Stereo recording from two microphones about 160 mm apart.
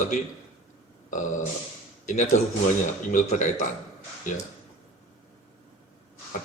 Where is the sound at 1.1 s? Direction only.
50° left (ahead or behind).